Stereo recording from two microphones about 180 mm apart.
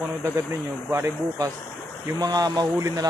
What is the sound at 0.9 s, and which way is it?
Speech, 15° right (ahead or behind).